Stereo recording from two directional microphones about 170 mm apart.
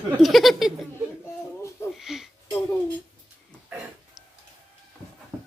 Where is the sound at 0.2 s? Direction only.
Centre (ahead or behind).